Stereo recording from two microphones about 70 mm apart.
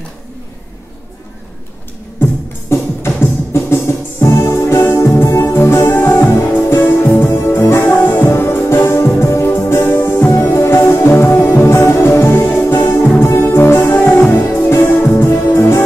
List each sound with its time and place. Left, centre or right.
2.7 s music: left